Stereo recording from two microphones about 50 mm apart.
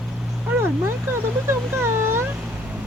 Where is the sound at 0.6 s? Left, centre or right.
Right.